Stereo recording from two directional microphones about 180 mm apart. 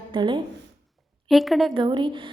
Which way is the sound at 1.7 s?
25° right (ahead or behind).